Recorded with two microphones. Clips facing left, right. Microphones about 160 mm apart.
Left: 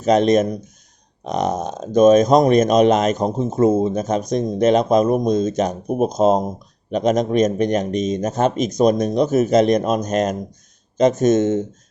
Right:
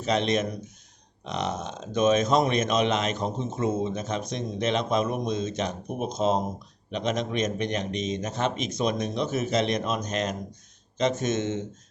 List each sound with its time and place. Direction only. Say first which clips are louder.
0.0 s speech: left 10 dB; 45° left (ahead or behind)